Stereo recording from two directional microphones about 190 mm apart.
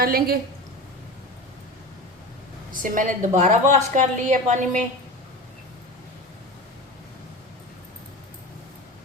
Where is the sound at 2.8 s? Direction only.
45° right (ahead or behind).